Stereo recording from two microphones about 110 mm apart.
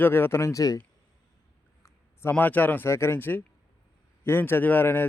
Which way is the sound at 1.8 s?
20° left (ahead or behind).